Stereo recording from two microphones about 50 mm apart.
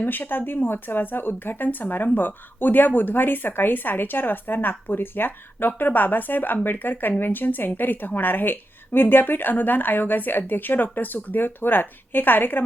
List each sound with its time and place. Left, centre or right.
0.0 s speech: left